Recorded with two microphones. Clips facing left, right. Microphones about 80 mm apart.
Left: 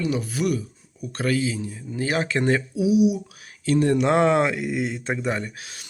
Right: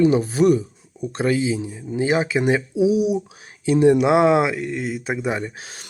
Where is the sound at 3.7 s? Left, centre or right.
Centre.